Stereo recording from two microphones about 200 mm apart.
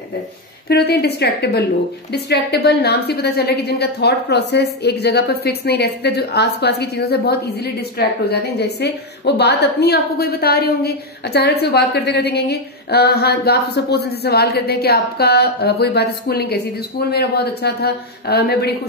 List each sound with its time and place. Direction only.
0.7 s a woman's voice: 55° left (ahead or behind)